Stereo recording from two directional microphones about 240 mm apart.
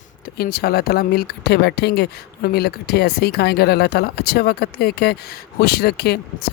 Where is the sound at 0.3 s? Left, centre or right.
Left.